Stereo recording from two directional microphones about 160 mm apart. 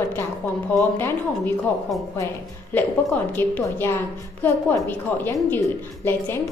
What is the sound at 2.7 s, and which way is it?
A woman's voice, 10° left (ahead or behind).